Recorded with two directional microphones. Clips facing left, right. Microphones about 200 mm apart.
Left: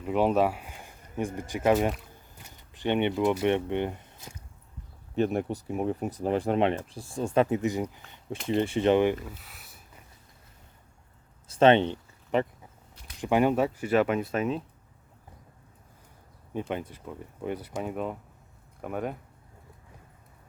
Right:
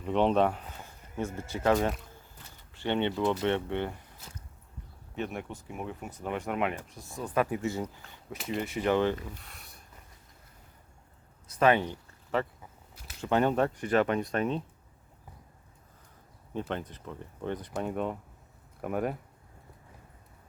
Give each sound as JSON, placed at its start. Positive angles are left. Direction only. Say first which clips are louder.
{"t": 0.0, "sound": "a sound", "louder": "left 1 dB", "side_deg": 5}
{"t": 1.4, "sound": "speech", "louder": "left 2 dB", "side_deg": 15}
{"t": 5.1, "sound": "speech", "louder": "left 9 dB", "side_deg": 35}
{"t": 9.3, "sound": "speech", "louder": "even", "side_deg": 5}
{"t": 11.4, "sound": "speech", "louder": "left 5 dB", "side_deg": 25}
{"t": 16.6, "sound": "speech", "louder": "left 2 dB", "side_deg": 10}